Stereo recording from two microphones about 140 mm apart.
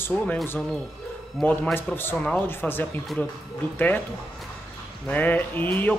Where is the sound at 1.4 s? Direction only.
Centre (ahead or behind).